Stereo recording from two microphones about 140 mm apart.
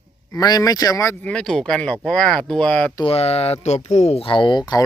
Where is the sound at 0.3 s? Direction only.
25° left (ahead or behind).